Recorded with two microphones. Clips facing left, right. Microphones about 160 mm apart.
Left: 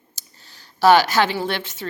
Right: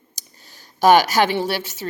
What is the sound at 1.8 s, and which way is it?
Speech, 25° right (ahead or behind).